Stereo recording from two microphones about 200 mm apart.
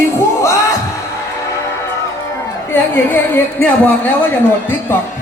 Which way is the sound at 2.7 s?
10° left (ahead or behind).